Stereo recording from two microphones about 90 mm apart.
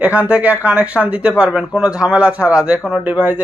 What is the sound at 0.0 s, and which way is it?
A man's voice, 15° right (ahead or behind).